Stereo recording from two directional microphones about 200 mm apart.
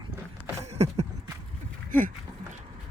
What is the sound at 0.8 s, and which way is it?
Speech, 30° right (ahead or behind).